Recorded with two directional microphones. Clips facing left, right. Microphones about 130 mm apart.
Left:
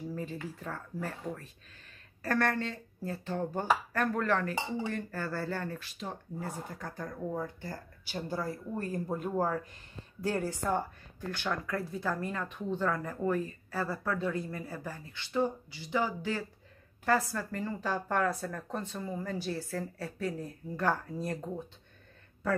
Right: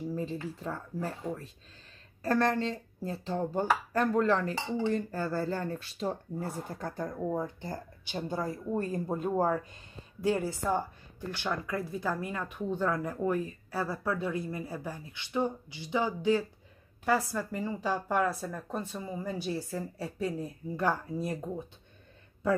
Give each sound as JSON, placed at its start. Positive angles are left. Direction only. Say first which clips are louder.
{"t": 0.1, "sound": "speech", "louder": "right 3 dB", "side_deg": -25}
{"t": 0.7, "sound": "speech", "louder": "right 3 dB", "side_deg": -15}
{"t": 2.2, "sound": "a woman's voice", "louder": "right 3 dB", "side_deg": -25}